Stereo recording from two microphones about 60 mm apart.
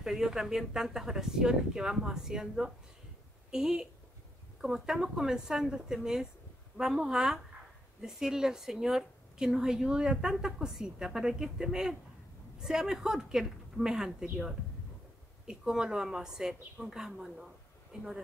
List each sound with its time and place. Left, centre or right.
0.0 s speech: centre
15.4 s speech: centre
17.9 s speech: centre